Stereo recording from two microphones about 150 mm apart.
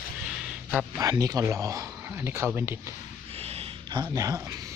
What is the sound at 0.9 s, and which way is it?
Speech, 25° right (ahead or behind).